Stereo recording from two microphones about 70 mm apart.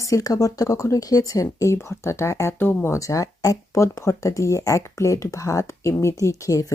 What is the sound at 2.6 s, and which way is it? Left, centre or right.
Speech, left.